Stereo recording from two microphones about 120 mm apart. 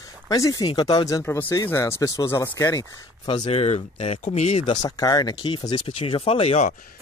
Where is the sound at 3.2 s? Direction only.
35° left (ahead or behind).